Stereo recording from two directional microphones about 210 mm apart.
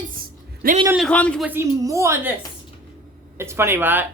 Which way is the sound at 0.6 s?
45° right (ahead or behind).